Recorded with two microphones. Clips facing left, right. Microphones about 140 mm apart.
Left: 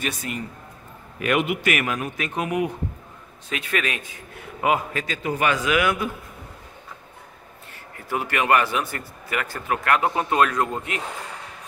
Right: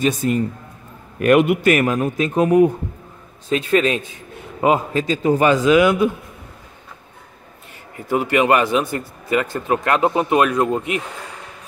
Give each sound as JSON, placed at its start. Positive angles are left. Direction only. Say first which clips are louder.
{"t": 0.0, "sound": "a man's voice", "louder": "right 11 dB", "side_deg": -30}
{"t": 1.2, "sound": "a man's voice", "louder": "right 9 dB", "side_deg": -45}
{"t": 7.9, "sound": "speech", "louder": "right 8 dB", "side_deg": -20}